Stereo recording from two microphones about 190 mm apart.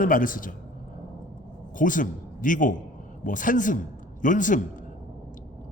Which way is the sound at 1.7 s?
45° left (ahead or behind).